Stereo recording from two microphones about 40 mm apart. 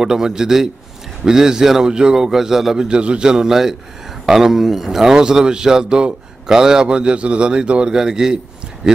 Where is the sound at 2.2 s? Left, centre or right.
Centre; by 7.9 s right.